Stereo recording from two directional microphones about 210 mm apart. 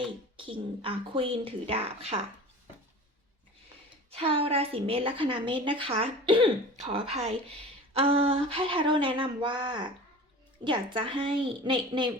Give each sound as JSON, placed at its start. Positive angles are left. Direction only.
{"t": 0.3, "sound": "a woman's voice", "side_deg": -25}
{"t": 4.1, "sound": "a woman's voice", "side_deg": -25}